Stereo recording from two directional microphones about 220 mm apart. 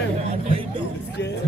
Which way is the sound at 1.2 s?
50° left (ahead or behind).